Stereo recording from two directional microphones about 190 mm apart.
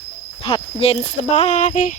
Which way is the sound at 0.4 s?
30° left (ahead or behind).